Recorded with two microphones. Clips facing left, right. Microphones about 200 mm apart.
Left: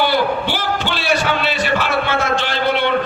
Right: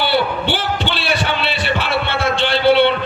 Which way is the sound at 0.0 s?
30° right (ahead or behind).